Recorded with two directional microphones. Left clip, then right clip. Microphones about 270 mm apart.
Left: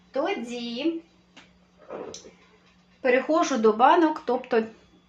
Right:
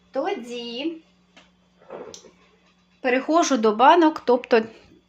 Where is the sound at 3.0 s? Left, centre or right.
Right.